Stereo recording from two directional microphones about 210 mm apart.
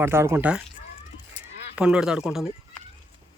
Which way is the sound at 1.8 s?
5° right (ahead or behind).